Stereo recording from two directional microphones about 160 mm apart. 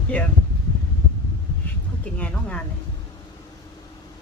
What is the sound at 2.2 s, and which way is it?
Speech, 5° left (ahead or behind).